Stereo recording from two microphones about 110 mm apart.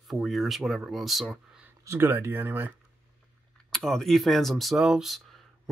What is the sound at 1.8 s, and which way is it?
Speech, 20° right (ahead or behind).